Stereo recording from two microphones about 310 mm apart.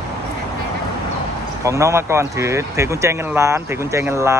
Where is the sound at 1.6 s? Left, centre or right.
Centre.